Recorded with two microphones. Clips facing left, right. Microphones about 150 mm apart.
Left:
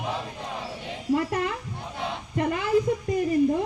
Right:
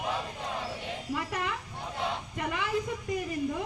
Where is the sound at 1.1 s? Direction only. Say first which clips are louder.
Left 9 dB; 45° left (ahead or behind).